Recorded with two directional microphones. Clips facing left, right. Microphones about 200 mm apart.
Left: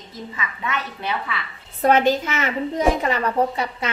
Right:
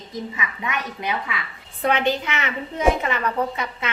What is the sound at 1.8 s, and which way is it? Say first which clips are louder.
Speech: left 4 dB; 45° left (ahead or behind).